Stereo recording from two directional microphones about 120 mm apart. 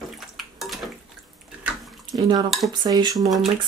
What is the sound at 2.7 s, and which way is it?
Cutlery, 35° right (ahead or behind).